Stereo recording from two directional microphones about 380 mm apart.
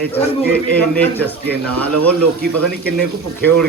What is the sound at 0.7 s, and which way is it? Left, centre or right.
Speech, centre.